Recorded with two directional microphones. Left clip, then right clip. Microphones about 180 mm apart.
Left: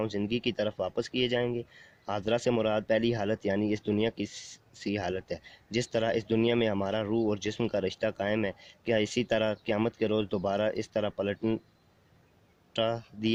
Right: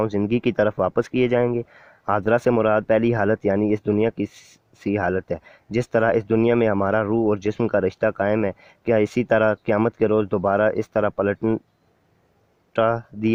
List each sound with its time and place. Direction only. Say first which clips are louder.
0.0 s speech: right 9 dB; 40° right (ahead or behind)
3.2 s speech: right 10 dB; 20° right (ahead or behind)
3.7 s speech: right 9 dB; 35° right (ahead or behind)
12.7 s speech: right 10 dB; 40° right (ahead or behind)